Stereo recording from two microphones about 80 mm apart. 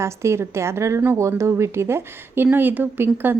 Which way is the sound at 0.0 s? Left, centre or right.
Right.